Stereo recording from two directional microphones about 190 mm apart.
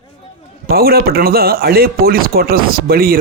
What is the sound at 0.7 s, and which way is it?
Speech, 55° right (ahead or behind).